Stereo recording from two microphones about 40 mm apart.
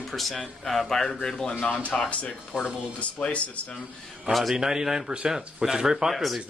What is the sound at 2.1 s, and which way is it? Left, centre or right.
Speech, left.